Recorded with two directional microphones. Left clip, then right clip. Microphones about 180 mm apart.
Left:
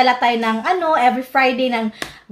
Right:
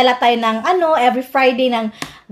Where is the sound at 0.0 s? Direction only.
45° right (ahead or behind).